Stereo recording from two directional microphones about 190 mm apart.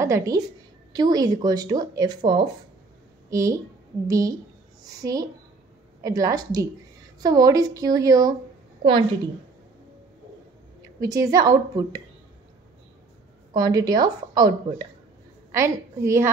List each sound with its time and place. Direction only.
0.0 s a woman's voice: 15° right (ahead or behind)
4.8 s a sound: 20° right (ahead or behind)
6.0 s a woman's voice: 15° right (ahead or behind)
11.0 s speech: 20° right (ahead or behind)
13.5 s a woman's voice: 20° right (ahead or behind)